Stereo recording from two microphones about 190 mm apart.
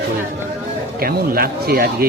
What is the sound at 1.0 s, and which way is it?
Speech, 50° right (ahead or behind).